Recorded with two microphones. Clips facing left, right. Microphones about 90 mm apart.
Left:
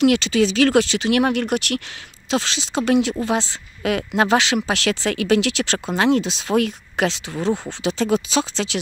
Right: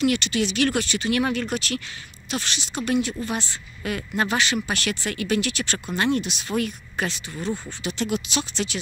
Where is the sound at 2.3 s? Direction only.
90° left.